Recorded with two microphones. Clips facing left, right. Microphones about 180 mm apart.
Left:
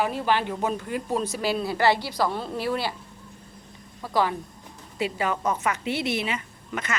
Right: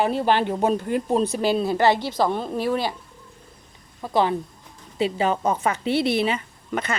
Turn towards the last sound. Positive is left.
turn(degrees=-30)  # may be behind; listen again after turning